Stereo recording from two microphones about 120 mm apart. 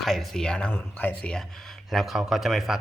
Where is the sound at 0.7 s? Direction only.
15° left (ahead or behind).